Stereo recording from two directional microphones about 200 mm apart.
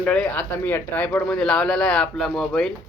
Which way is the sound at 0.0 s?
5° left (ahead or behind).